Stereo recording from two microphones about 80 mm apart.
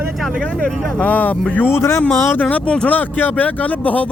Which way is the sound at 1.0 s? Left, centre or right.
Centre.